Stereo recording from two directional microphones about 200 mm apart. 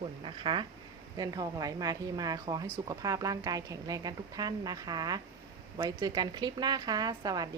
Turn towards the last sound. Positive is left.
turn(degrees=-20)  # may be behind; listen again after turning